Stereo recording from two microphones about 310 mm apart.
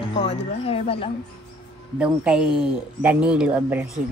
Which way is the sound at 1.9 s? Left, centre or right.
Centre.